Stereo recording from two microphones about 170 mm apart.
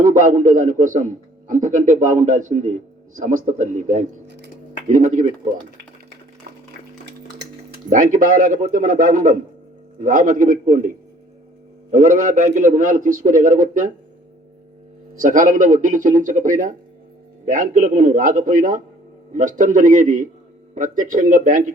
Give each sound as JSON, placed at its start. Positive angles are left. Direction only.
{"t": 0.0, "sound": "a man's voice", "side_deg": -50}
{"t": 4.3, "sound": "a sound", "side_deg": -85}
{"t": 4.9, "sound": "a man's voice", "side_deg": -45}
{"t": 7.9, "sound": "a man's voice", "side_deg": -50}
{"t": 15.1, "sound": "a man's voice", "side_deg": -50}